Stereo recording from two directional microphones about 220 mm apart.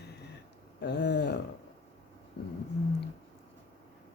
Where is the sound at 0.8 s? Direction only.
50° left (ahead or behind).